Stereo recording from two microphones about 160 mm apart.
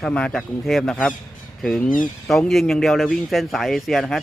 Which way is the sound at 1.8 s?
60° left (ahead or behind).